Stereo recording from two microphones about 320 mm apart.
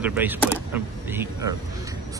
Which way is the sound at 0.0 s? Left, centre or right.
Centre.